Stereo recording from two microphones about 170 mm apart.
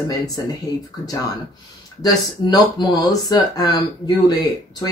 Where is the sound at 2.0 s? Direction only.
25° left (ahead or behind).